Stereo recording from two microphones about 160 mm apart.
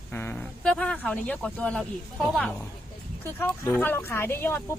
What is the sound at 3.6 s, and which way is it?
A woman's voice, 10° left (ahead or behind).